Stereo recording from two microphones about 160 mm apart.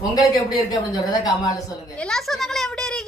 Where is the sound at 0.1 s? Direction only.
20° left (ahead or behind).